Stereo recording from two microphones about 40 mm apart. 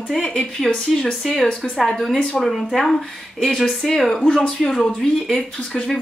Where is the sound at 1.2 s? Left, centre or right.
Centre.